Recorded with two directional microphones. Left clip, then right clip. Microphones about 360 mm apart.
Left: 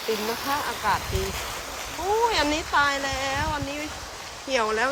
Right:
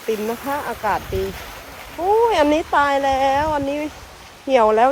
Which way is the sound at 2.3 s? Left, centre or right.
Centre.